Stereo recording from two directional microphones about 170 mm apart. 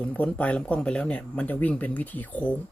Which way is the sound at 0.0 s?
10° left (ahead or behind).